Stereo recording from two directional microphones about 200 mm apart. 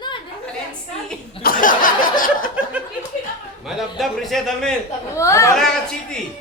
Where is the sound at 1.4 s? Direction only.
45° left (ahead or behind).